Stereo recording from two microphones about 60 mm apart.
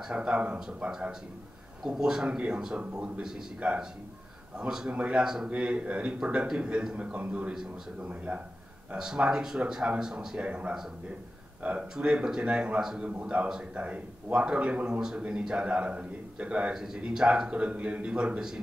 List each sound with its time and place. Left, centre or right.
0.1 s a man's voice: centre
4.6 s a man's voice: centre
11.9 s a man's voice: centre
12.8 s a man's voice: centre
13.1 s a man's voice: right
16.7 s a man's voice: centre